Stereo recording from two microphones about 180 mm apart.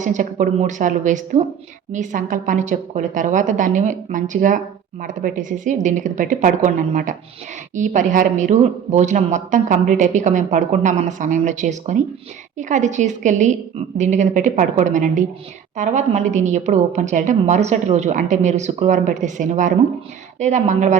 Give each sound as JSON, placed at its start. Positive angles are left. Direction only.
{"t": 0.0, "sound": "a woman's voice", "side_deg": -45}